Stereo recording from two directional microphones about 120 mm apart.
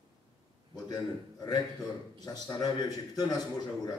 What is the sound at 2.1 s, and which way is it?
A man's voice, 35° left (ahead or behind).